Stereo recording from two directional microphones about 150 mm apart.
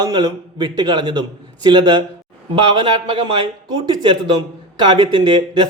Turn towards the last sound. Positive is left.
turn(degrees=-30)  # may be behind; listen again after turning